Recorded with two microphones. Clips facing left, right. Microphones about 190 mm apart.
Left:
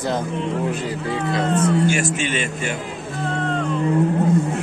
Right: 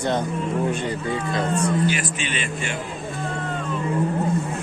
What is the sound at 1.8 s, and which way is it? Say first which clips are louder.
Speech: left 4 dB; 45° left (ahead or behind).